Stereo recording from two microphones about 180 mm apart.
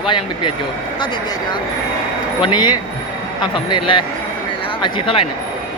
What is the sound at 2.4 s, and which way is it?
Speech, 25° left (ahead or behind).